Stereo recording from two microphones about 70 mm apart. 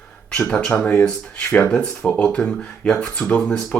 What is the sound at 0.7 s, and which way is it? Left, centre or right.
Speech, left.